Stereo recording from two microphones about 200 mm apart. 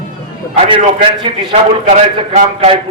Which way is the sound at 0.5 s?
30° right (ahead or behind).